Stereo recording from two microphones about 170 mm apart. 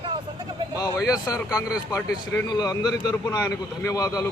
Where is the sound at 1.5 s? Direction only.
5° right (ahead or behind).